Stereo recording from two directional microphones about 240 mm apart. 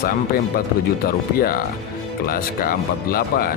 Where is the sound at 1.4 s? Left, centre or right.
Left.